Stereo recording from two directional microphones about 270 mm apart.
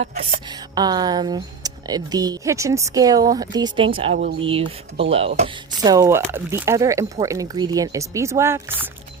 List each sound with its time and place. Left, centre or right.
0.8 s speech: centre
4.2 s speech: right
4.4 s speech: centre
5.9 s speech: centre